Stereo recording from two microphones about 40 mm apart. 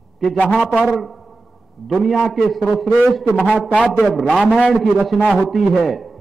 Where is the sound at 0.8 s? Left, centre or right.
Centre.